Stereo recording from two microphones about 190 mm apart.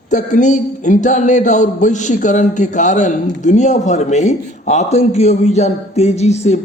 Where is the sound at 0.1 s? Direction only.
40° left (ahead or behind).